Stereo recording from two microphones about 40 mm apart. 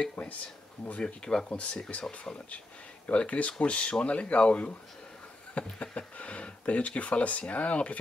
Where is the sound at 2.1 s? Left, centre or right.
Left.